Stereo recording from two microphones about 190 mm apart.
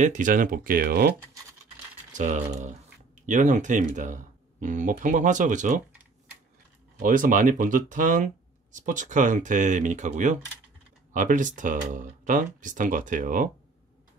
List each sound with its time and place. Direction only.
0.0 s speech: 40° right (ahead or behind)
2.1 s speech: 40° right (ahead or behind)
7.0 s speech: 45° right (ahead or behind)